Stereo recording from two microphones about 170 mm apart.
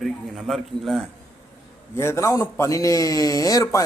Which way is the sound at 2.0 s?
15° left (ahead or behind).